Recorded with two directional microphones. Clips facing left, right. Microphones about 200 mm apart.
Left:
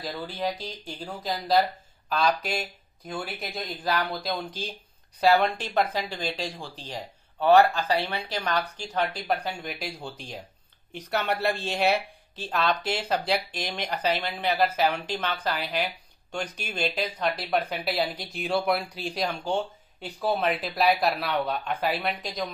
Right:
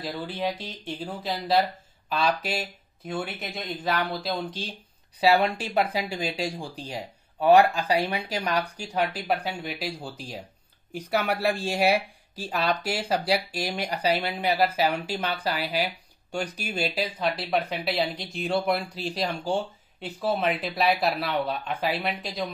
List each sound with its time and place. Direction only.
0.0 s speech: 5° right (ahead or behind)